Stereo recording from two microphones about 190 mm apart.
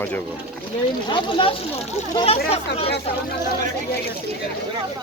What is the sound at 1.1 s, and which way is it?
Speech, 25° left (ahead or behind).